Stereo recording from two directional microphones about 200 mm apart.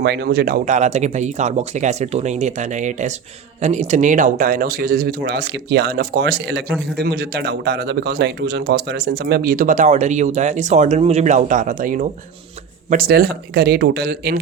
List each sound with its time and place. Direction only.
0.0 s speech: 55° right (ahead or behind)